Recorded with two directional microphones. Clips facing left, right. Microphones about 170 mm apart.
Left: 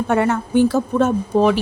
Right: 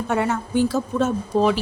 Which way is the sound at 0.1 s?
60° left (ahead or behind).